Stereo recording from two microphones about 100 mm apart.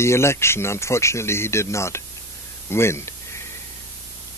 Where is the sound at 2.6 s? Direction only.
25° left (ahead or behind).